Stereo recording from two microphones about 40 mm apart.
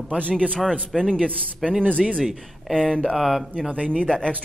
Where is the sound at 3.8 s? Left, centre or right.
Left.